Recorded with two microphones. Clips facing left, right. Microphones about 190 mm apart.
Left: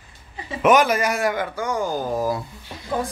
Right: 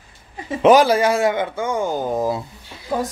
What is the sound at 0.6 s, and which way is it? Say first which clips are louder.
Speech: right 4 dB; 30° right (ahead or behind).